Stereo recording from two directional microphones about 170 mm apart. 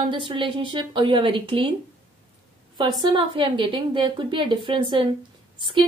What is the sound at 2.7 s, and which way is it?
A woman's voice, 25° right (ahead or behind).